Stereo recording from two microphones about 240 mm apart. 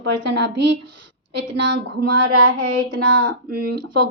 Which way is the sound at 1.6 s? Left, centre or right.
Right.